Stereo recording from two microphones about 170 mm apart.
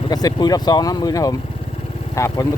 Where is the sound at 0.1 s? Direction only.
20° left (ahead or behind).